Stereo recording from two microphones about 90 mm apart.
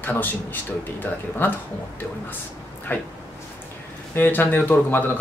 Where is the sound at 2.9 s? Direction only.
20° left (ahead or behind).